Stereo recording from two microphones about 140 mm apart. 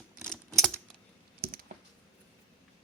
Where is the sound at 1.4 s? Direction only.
90° right.